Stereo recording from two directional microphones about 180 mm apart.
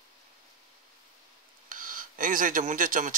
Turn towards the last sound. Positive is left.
turn(degrees=-50)  # may be behind; listen again after turning